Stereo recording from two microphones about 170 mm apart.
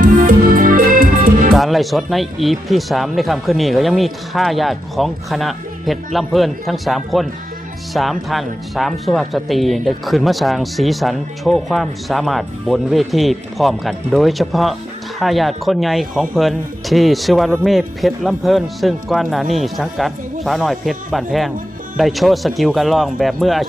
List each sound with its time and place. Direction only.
0.0 s music: 55° right (ahead or behind)
1.5 s speech: centre (ahead or behind)